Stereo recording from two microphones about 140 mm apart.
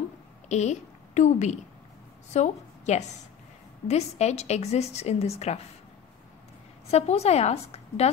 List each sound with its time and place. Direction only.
0.5 s a woman's voice: 55° left (ahead or behind)
6.9 s a woman's voice: 50° left (ahead or behind)